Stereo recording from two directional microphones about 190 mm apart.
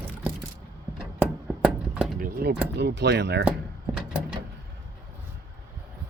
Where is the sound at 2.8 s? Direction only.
65° right (ahead or behind).